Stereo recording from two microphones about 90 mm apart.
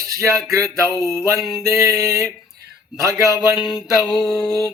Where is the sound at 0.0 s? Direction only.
35° right (ahead or behind).